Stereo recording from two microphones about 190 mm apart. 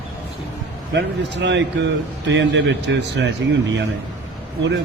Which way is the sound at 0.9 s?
70° right (ahead or behind).